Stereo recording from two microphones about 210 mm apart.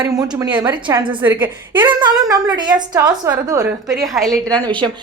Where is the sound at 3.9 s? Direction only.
Centre (ahead or behind).